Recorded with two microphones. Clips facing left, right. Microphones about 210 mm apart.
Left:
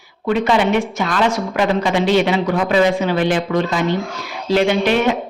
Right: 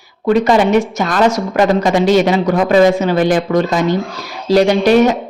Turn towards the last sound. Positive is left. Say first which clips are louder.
# right 5 dB
turn(degrees=-40)  # may be behind; listen again after turning